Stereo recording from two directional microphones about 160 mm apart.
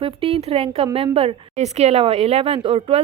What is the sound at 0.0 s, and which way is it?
Speech, 35° right (ahead or behind).